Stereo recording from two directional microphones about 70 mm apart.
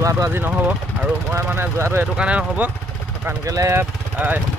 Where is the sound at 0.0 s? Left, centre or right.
Right.